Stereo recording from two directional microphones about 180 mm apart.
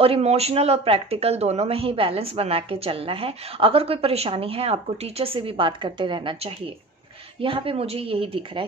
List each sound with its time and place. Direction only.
0.0 s speech: 35° right (ahead or behind)